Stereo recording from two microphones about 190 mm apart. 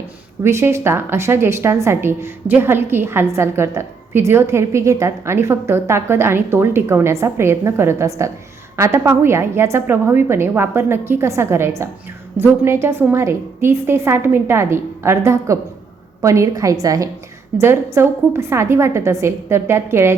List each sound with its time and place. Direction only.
0.4 s a woman's voice: 15° right (ahead or behind)
17.5 s a woman's voice: 5° right (ahead or behind)